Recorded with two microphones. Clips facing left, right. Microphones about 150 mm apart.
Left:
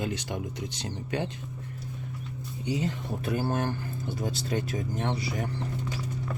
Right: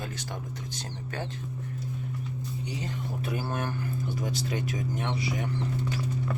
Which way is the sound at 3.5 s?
35° left (ahead or behind).